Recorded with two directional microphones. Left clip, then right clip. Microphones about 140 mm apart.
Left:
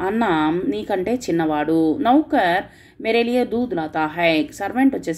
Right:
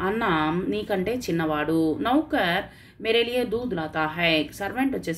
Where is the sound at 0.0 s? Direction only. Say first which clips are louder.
Left 4 dB; 45° left (ahead or behind).